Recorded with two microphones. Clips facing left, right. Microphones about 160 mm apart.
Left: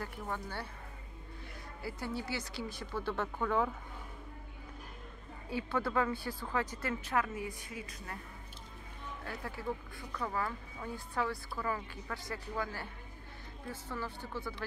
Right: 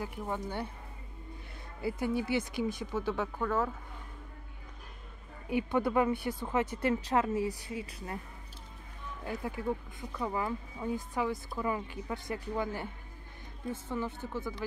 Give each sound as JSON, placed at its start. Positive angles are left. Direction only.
{"t": 0.0, "sound": "speech", "side_deg": -20}
{"t": 1.8, "sound": "speech", "side_deg": -20}
{"t": 3.3, "sound": "speech", "side_deg": 0}
{"t": 5.5, "sound": "speech", "side_deg": -20}
{"t": 9.2, "sound": "speech", "side_deg": -15}